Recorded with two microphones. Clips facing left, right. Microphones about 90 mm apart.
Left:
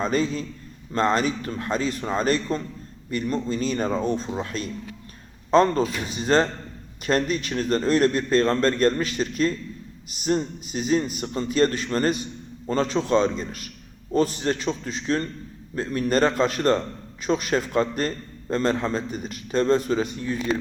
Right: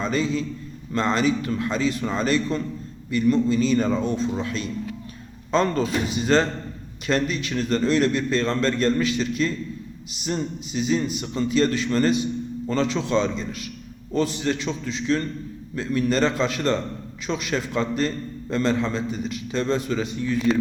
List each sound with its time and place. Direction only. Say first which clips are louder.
0.0 s a man's voice: even; 45° left (ahead or behind)